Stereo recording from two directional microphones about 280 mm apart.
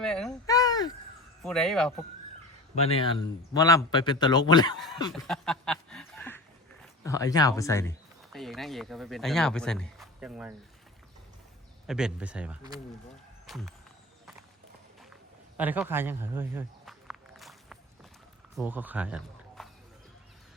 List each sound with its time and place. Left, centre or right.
0.0 s speech: centre
0.4 s a sound: centre
1.4 s speech: centre
2.7 s a man's voice: left
5.1 s a sound: centre
7.0 s speech: centre
11.9 s speech: centre
15.1 s a sound: centre
18.5 s speech: centre